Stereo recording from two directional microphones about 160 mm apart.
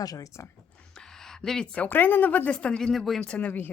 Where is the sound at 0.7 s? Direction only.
5° left (ahead or behind).